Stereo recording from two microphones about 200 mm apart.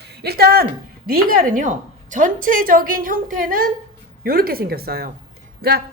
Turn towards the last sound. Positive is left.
turn(degrees=-50)  # may be behind; listen again after turning